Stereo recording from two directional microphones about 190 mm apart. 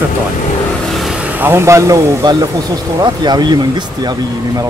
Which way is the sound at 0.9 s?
Centre (ahead or behind).